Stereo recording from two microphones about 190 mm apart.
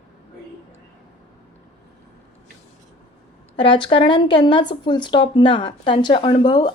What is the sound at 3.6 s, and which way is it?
Speech, 25° left (ahead or behind).